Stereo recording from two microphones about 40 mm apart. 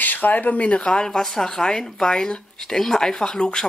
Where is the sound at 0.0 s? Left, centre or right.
Left.